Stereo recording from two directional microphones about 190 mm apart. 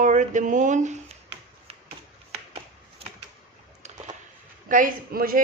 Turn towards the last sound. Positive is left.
turn(degrees=-50)  # may be behind; listen again after turning